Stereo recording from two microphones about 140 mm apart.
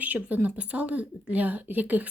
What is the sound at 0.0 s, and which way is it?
Speech, 10° right (ahead or behind).